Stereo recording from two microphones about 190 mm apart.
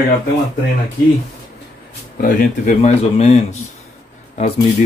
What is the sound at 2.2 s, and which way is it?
Speech, 45° left (ahead or behind).